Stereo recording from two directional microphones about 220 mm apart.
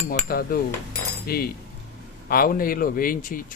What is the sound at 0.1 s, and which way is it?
Speech, 40° left (ahead or behind).